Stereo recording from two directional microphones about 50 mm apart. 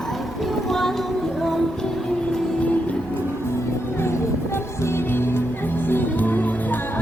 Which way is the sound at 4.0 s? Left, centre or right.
Left.